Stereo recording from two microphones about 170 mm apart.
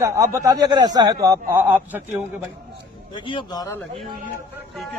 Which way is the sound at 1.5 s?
10° right (ahead or behind).